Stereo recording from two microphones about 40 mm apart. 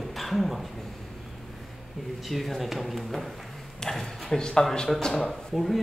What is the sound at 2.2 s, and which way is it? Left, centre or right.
A man's voice, centre.